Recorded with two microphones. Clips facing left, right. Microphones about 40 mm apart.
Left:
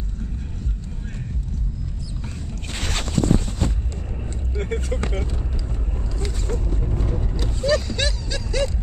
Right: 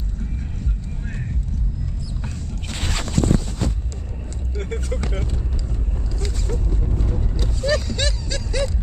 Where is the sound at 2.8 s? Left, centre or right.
Left.